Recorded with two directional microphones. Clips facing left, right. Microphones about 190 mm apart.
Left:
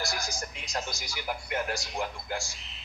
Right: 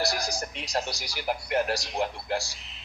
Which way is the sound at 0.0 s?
35° right (ahead or behind).